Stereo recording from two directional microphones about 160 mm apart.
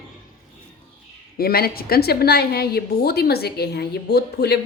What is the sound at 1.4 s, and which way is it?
A woman's voice, 75° left (ahead or behind).